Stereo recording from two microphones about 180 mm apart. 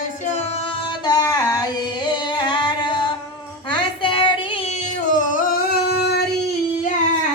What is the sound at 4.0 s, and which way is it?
Child singing, 30° left (ahead or behind).